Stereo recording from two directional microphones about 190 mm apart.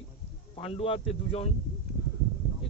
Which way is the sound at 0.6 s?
30° left (ahead or behind).